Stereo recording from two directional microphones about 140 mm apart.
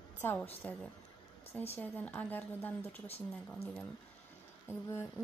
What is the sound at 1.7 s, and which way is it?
A woman's voice, 10° left (ahead or behind).